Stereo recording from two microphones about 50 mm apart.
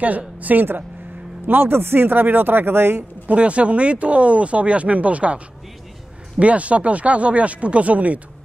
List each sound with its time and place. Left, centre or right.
0.4 s a woman's voice: right
3.3 s speech: right